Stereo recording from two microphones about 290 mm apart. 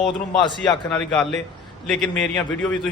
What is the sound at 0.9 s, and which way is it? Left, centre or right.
Speech, centre.